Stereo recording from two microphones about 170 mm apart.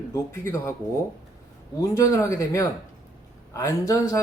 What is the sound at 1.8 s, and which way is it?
A man's voice, 20° left (ahead or behind).